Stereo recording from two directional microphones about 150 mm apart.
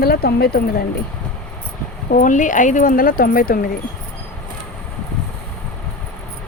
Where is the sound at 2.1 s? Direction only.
60° left (ahead or behind).